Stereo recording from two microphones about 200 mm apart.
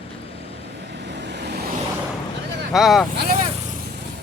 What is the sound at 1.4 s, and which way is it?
Vehicle, 55° right (ahead or behind).